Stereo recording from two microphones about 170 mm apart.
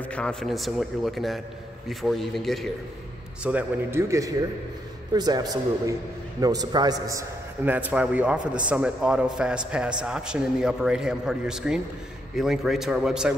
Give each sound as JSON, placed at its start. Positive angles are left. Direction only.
{"t": 0.0, "sound": "a man's voice", "side_deg": 5}
{"t": 3.4, "sound": "a man's voice", "side_deg": -10}